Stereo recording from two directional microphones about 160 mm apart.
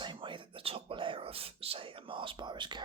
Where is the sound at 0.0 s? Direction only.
30° right (ahead or behind).